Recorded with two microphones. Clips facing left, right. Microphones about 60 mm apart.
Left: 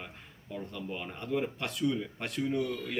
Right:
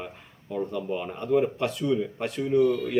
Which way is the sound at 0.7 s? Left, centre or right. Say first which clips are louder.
Right 9 dB; centre.